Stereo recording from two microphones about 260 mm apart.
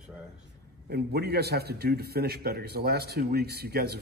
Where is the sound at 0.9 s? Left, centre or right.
Right.